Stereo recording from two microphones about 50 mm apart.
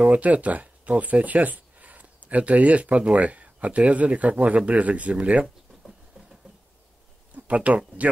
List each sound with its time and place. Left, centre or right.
0.0 s speech: right
7.3 s speech: right